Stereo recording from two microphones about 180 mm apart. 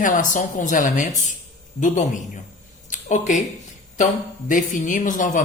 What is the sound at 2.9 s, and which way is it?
Speech, 45° left (ahead or behind).